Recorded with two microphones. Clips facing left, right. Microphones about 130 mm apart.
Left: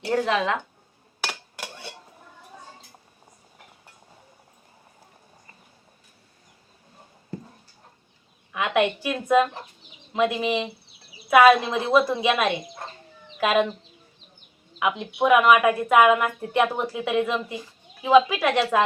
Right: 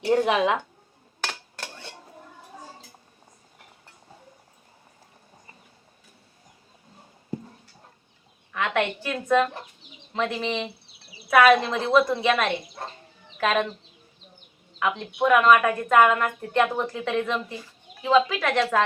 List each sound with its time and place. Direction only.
0.0 s speech: 15° right (ahead or behind)
1.2 s a sound: 10° left (ahead or behind)
8.5 s a woman's voice: 10° left (ahead or behind)
14.8 s a woman's voice: 10° left (ahead or behind)